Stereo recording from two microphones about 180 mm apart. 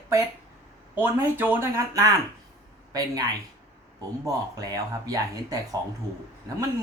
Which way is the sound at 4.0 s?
20° right (ahead or behind).